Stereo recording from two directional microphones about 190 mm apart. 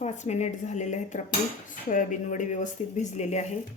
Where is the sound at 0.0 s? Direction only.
40° left (ahead or behind).